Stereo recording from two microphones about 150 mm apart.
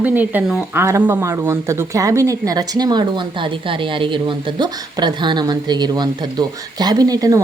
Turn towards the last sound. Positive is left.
turn(degrees=-25)  # may be behind; listen again after turning